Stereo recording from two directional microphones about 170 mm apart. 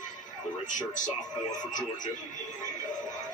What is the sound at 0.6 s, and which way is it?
Speech, 50° left (ahead or behind).